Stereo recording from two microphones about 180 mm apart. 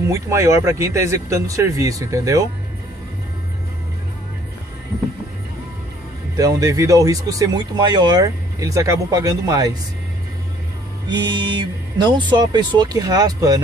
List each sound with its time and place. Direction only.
0.1 s speech: 15° right (ahead or behind)
6.3 s speech: 20° right (ahead or behind)
11.1 s speech: 25° right (ahead or behind)